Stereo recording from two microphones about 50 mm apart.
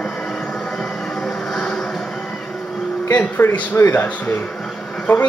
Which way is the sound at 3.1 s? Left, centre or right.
Left.